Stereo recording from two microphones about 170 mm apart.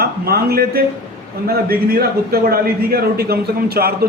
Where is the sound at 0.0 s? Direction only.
65° right (ahead or behind).